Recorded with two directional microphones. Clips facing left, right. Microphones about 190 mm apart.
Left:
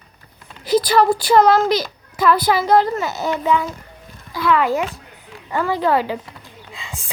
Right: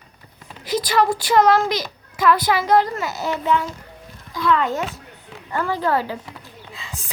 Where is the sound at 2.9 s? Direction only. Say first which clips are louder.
Left 3 dB; 20° left (ahead or behind).